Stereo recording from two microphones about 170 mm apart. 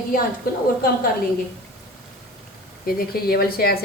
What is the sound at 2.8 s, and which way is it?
Speech, 60° left (ahead or behind).